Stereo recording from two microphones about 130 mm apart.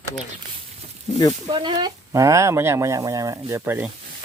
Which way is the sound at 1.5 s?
35° right (ahead or behind).